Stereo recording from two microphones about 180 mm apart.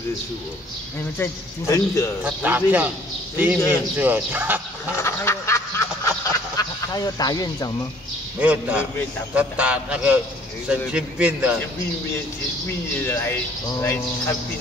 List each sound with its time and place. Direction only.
1.1 s a man's voice: 15° left (ahead or behind)
2.2 s speech: 10° right (ahead or behind)
4.9 s duck: 15° left (ahead or behind)
8.4 s a man's voice: 5° right (ahead or behind)
13.0 s a man's voice: 15° left (ahead or behind)